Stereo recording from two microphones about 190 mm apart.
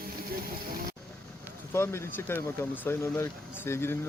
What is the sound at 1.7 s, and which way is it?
Speech, 15° left (ahead or behind).